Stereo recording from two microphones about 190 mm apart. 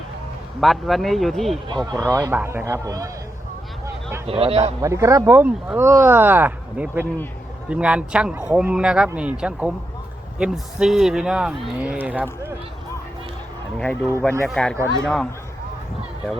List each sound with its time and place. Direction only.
0.6 s speech: centre (ahead or behind)
1.6 s speech: 20° right (ahead or behind)
4.3 s a man's voice: 30° right (ahead or behind)
4.8 s speech: 15° right (ahead or behind)
13.7 s speech: 5° left (ahead or behind)